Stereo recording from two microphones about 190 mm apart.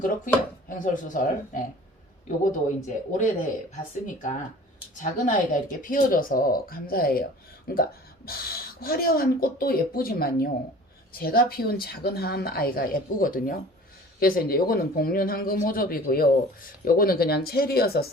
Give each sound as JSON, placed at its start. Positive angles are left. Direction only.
{"t": 0.7, "sound": "a man's voice", "side_deg": 45}